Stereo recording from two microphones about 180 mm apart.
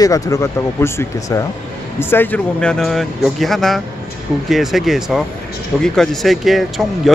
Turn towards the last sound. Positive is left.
turn(degrees=0)  # may be behind; listen again after turning